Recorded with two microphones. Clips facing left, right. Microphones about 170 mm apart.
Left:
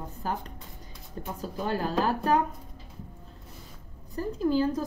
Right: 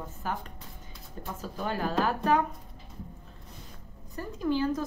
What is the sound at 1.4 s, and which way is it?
Speech, 35° left (ahead or behind).